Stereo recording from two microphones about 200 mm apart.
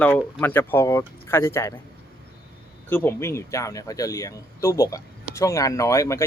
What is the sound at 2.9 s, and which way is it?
Speech, 10° left (ahead or behind).